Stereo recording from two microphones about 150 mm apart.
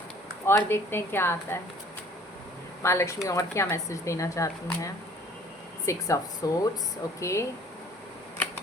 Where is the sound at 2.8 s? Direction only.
20° left (ahead or behind).